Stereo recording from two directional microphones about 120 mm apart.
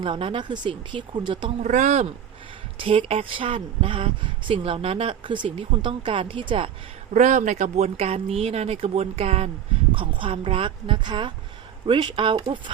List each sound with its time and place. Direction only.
0.0 s speech: 45° right (ahead or behind)
1.6 s speech: 85° right
2.7 s speech: 50° right (ahead or behind)
7.1 s speech: 90° right; by 9.5 s 55° right (ahead or behind)
9.9 s speech: 45° right (ahead or behind)